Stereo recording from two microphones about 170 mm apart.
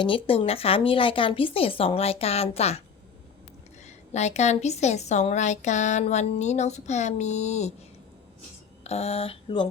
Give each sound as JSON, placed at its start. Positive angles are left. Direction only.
{"t": 0.0, "sound": "a woman's voice", "side_deg": 30}
{"t": 3.8, "sound": "a woman's voice", "side_deg": 40}
{"t": 8.8, "sound": "speech", "side_deg": 40}